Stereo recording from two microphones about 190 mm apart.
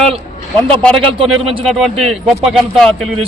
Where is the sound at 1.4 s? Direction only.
30° right (ahead or behind).